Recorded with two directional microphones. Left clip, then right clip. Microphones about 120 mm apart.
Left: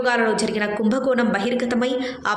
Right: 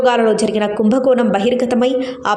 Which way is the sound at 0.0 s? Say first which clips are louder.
Right 6 dB; 45° right (ahead or behind).